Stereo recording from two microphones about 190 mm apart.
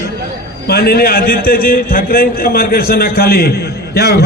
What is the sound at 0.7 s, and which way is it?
A man's voice, 55° left (ahead or behind).